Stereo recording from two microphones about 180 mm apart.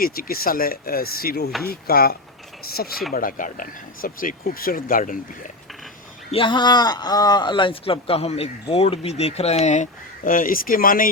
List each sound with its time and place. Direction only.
0.0 s speech: 55° left (ahead or behind)
6.3 s a man's voice: 25° left (ahead or behind); by 11.1 s 50° left (ahead or behind)